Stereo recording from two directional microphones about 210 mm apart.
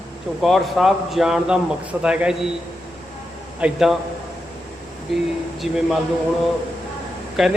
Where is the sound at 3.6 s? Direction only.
Centre (ahead or behind).